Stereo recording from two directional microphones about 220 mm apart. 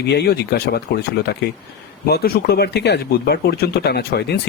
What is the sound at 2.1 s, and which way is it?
Speech, 45° left (ahead or behind).